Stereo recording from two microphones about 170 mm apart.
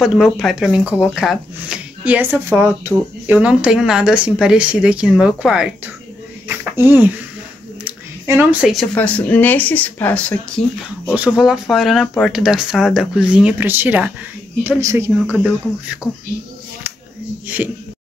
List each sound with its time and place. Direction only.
0.0 s speech: centre (ahead or behind)
6.4 s a sound: 10° right (ahead or behind)
8.9 s speech: 10° left (ahead or behind)
11.1 s speech: 5° right (ahead or behind)
17.5 s speech: 10° right (ahead or behind)